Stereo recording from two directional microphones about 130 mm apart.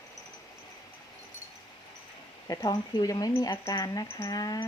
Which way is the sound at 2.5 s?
30° left (ahead or behind).